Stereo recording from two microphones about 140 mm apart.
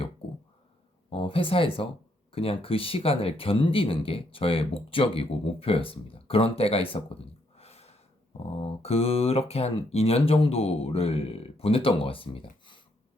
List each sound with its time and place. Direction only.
1.1 s speech: 40° left (ahead or behind)